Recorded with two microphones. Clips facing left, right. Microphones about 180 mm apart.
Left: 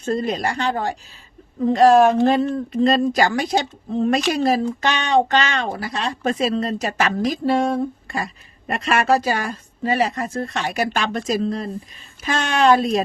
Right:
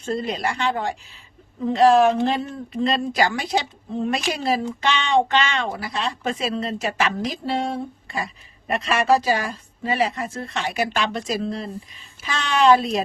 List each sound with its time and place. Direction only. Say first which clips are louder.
0.0 s a woman's voice: left 3 dB; 45° left (ahead or behind)